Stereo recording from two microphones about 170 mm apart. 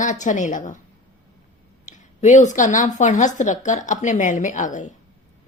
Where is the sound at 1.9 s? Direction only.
45° left (ahead or behind).